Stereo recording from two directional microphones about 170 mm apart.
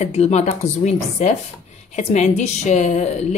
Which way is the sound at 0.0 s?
40° left (ahead or behind).